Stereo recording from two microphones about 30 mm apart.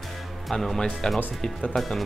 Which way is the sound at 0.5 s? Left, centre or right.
Centre.